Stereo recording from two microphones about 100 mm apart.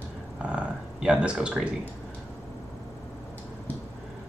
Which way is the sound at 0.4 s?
10° right (ahead or behind).